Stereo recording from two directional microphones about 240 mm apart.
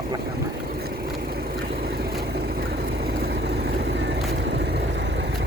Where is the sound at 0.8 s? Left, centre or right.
Right.